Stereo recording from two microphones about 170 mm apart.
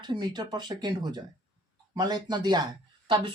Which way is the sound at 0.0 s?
25° right (ahead or behind).